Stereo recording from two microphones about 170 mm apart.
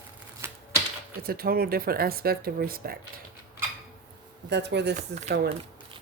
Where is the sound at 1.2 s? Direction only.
65° right (ahead or behind).